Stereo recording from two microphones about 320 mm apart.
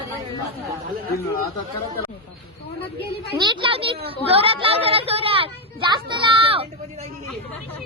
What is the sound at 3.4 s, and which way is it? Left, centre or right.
Speech, centre.